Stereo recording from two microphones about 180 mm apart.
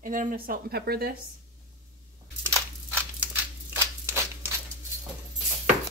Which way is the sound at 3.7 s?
15° right (ahead or behind).